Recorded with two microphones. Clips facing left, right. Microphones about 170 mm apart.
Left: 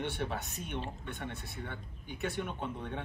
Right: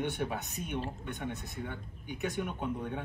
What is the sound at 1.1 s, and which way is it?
A man's voice, 15° right (ahead or behind).